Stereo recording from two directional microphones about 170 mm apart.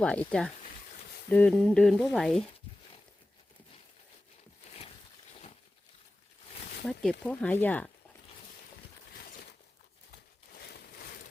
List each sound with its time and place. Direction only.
0.0 s speech: 5° left (ahead or behind)
6.8 s speech: 5° left (ahead or behind)
10.5 s a sound: 65° left (ahead or behind)